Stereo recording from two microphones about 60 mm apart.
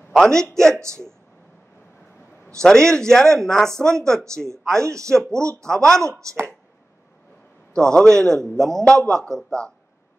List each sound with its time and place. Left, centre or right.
0.2 s speech: centre
0.7 s speech: right
2.6 s speech: centre
4.8 s a man's voice: right
5.6 s speech: centre
6.2 s a man's voice: right
7.7 s speech: centre